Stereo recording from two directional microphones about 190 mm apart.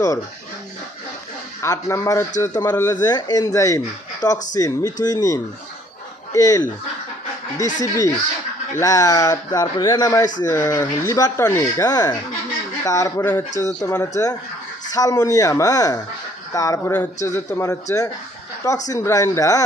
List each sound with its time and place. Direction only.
1.6 s speech: 15° left (ahead or behind)
7.8 s speech: 20° left (ahead or behind)